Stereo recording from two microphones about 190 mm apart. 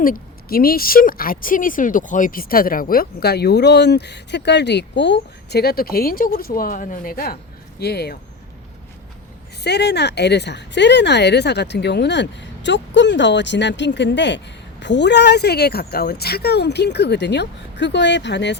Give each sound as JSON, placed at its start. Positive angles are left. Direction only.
{"t": 0.0, "sound": "speech", "side_deg": 50}
{"t": 9.6, "sound": "speech", "side_deg": 60}